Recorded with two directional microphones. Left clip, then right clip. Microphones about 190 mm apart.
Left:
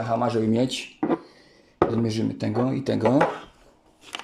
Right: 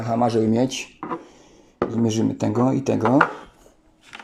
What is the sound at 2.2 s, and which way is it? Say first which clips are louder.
Speech: right 5 dB; 10° right (ahead or behind).